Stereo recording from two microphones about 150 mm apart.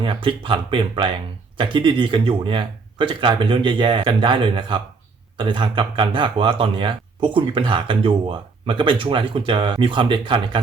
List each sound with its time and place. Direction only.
0.0 s speech: 35° right (ahead or behind)